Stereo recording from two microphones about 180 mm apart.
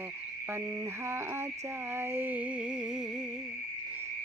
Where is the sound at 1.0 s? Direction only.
15° right (ahead or behind).